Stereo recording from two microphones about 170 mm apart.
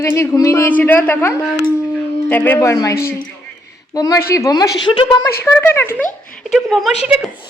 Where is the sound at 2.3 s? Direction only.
10° left (ahead or behind).